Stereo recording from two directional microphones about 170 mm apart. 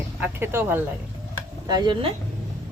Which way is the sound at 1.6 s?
25° right (ahead or behind).